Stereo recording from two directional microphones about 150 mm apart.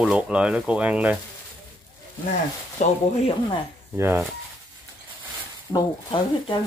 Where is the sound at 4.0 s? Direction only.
15° right (ahead or behind).